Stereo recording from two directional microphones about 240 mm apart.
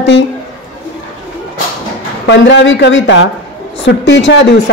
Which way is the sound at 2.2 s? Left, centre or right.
Left.